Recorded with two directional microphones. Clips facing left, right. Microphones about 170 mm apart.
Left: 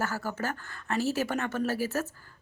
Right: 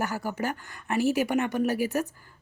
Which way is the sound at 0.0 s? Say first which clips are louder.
Right 2 dB; 15° right (ahead or behind).